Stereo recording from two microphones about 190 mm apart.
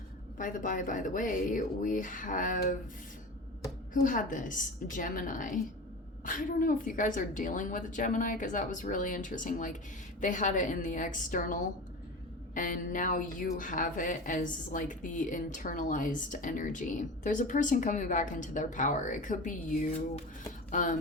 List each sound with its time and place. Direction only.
0.3 s a woman's voice: 45° left (ahead or behind)
3.9 s a woman's voice: 45° left (ahead or behind)